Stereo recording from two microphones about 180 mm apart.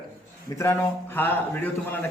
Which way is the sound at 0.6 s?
15° left (ahead or behind).